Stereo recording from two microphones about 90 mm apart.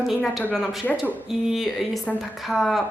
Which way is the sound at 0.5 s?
Centre (ahead or behind).